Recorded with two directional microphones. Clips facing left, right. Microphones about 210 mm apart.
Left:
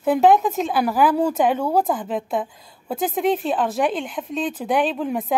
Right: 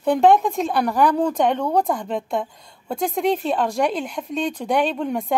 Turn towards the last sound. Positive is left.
turn(degrees=0)  # may be behind; listen again after turning